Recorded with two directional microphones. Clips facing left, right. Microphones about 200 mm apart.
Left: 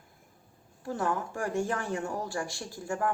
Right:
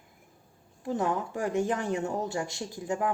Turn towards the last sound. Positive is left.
turn(degrees=-20)  # may be behind; listen again after turning